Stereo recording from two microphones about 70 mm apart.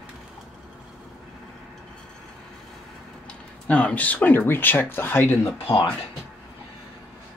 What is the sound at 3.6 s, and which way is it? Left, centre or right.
Speech, centre.